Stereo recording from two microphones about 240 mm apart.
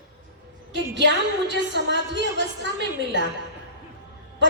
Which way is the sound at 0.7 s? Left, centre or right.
Right.